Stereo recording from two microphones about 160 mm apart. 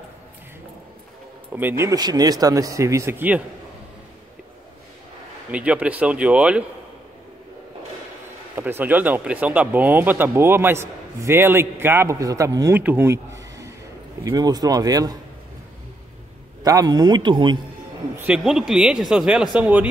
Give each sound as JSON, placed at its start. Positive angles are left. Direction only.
{"t": 1.5, "sound": "speech", "side_deg": -10}
{"t": 5.5, "sound": "speech", "side_deg": -10}
{"t": 8.5, "sound": "speech", "side_deg": -15}
{"t": 16.6, "sound": "speech", "side_deg": -25}
{"t": 18.1, "sound": "speech", "side_deg": -10}